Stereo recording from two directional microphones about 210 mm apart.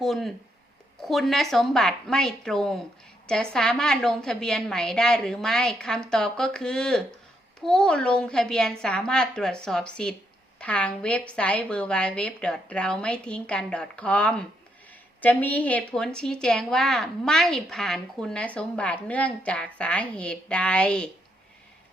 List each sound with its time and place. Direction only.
0.0 s a woman's voice: centre (ahead or behind)